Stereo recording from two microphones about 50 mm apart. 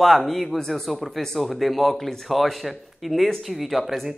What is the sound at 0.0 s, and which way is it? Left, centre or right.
Speech, centre.